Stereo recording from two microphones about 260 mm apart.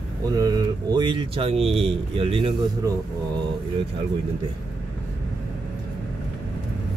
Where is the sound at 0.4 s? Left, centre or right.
Centre.